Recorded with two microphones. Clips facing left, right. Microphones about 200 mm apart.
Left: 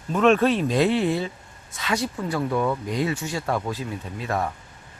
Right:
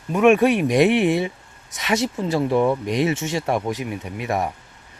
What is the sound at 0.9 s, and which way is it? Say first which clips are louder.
Speech: right 4 dB; 75° right (ahead or behind).